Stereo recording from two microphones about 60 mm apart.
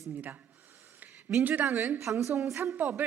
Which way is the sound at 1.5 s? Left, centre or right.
Right.